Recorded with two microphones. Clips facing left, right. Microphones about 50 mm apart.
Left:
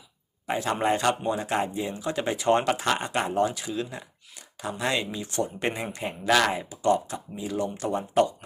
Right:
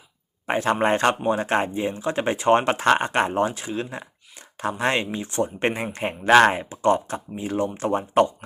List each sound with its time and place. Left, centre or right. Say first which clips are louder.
0.4 s speech: right 4 dB; right